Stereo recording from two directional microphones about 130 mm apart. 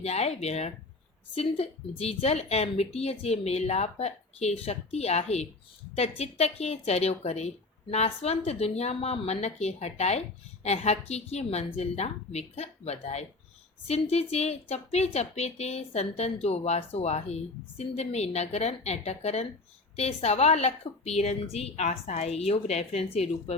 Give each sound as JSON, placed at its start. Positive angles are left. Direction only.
{"t": 0.0, "sound": "a woman's voice", "side_deg": 55}